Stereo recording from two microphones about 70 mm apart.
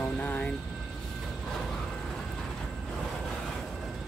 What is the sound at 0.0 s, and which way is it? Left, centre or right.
Vehicle, left.